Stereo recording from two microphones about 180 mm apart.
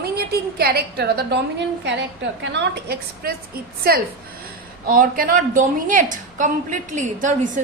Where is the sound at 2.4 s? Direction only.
75° right (ahead or behind).